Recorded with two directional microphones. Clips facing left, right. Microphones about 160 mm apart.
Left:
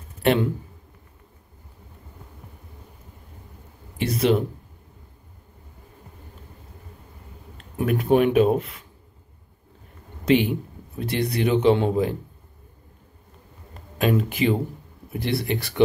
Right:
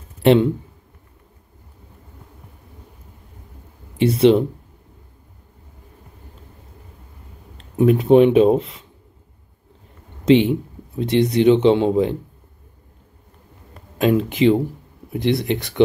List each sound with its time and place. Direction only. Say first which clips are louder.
0.2 s speech: right 7 dB; 25° right (ahead or behind)
4.0 s speech: right 7 dB; 25° right (ahead or behind)
7.5 s speech: right 8 dB; 25° right (ahead or behind)
10.2 s speech: right 5 dB; 25° right (ahead or behind)
14.0 s speech: right 6 dB; 20° right (ahead or behind)